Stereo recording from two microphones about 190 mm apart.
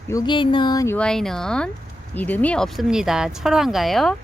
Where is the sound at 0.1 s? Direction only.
20° left (ahead or behind).